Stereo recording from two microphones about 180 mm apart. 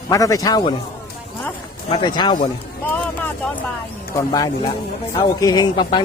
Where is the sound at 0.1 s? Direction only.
20° left (ahead or behind).